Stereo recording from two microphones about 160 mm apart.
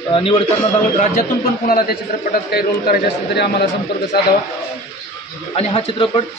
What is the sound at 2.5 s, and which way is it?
A man's voice, 90° left.